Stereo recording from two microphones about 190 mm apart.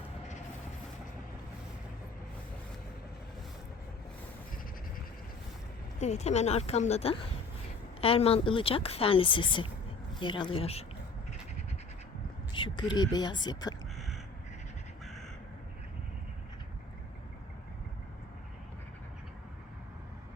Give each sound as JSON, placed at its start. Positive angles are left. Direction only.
{"t": 6.0, "sound": "a woman's voice", "side_deg": 35}
{"t": 12.5, "sound": "speech", "side_deg": 25}